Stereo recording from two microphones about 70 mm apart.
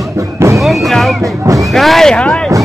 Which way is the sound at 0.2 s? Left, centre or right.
Right.